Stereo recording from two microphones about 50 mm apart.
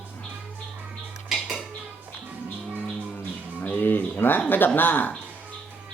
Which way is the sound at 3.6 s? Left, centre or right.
Left.